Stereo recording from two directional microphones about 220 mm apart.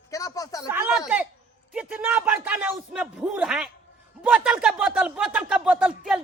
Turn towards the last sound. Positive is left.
turn(degrees=-5)  # may be behind; listen again after turning